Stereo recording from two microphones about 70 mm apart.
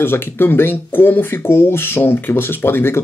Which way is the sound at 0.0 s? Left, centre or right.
Left.